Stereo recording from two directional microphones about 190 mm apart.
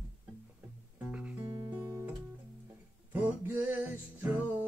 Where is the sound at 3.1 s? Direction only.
10° right (ahead or behind).